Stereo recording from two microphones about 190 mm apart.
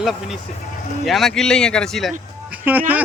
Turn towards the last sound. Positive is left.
turn(degrees=-10)  # may be behind; listen again after turning